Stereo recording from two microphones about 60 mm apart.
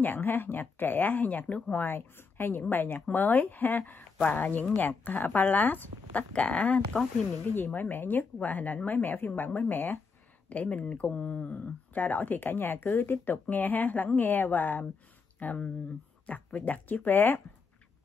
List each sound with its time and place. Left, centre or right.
0.0 s speech: left
7.5 s speech: left